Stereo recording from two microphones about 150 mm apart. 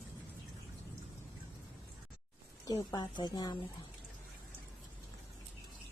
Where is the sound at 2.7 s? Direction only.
25° left (ahead or behind).